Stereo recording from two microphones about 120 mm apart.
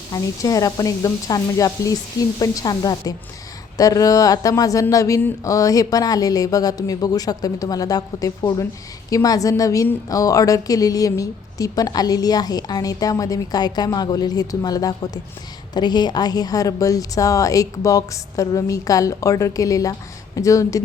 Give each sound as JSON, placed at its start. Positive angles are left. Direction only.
{"t": 0.1, "sound": "a woman's voice", "side_deg": 30}